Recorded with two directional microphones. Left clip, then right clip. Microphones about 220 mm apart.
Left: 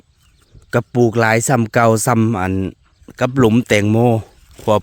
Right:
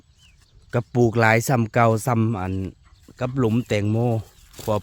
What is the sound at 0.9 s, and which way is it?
Speech, 20° left (ahead or behind).